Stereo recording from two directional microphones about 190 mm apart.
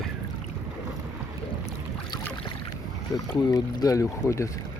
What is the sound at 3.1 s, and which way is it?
Speech, 20° left (ahead or behind).